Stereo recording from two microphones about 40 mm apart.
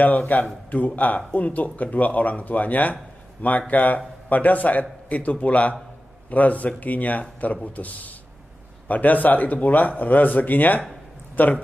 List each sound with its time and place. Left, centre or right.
0.3 s speech: left